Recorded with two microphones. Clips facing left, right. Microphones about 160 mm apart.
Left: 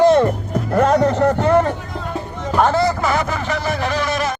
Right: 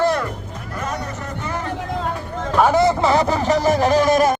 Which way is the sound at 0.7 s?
60° left (ahead or behind).